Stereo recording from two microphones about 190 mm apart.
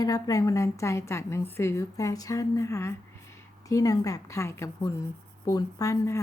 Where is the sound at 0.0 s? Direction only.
20° left (ahead or behind).